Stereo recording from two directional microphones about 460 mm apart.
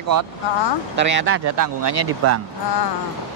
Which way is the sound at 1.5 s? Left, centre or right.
Right.